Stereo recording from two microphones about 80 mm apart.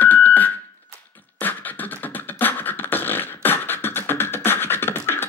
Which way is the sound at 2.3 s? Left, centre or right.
Left.